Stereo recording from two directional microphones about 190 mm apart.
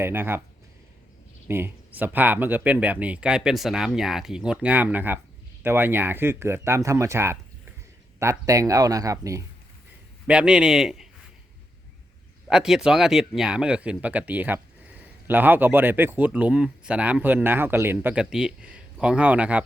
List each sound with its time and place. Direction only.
0.0 s speech: 10° right (ahead or behind)
1.5 s speech: 10° right (ahead or behind)
10.2 s a man's voice: 5° right (ahead or behind)
12.5 s speech: 5° right (ahead or behind)